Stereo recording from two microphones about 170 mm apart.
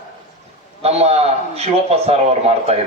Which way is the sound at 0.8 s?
40° right (ahead or behind).